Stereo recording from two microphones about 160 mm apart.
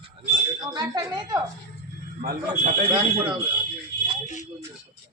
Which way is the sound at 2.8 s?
20° right (ahead or behind).